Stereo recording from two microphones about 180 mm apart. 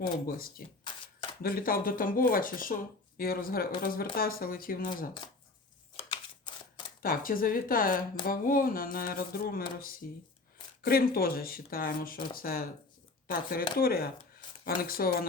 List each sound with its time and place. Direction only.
0.3 s a woman's voice: 55° left (ahead or behind)
7.0 s a woman's voice: 50° left (ahead or behind)